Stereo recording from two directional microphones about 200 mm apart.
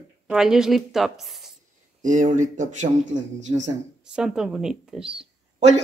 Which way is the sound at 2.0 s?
40° right (ahead or behind).